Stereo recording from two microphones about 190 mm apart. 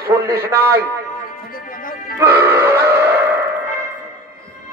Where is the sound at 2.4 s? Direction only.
15° right (ahead or behind).